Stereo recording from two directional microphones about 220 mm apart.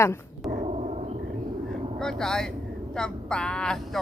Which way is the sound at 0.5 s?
30° right (ahead or behind).